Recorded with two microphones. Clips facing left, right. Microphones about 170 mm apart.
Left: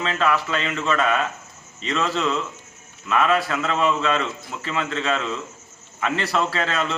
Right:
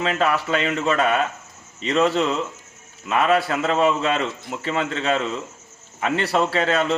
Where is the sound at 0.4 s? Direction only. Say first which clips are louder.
Right 3 dB; 35° right (ahead or behind).